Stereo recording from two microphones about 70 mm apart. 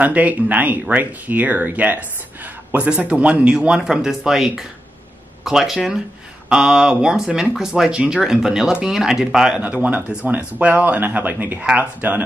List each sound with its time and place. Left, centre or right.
0.0 s speech: right
9.6 s speech: right